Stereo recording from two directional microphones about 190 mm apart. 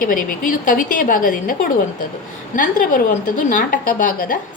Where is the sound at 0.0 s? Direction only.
45° left (ahead or behind).